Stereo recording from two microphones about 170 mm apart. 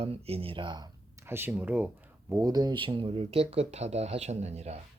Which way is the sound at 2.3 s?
20° right (ahead or behind).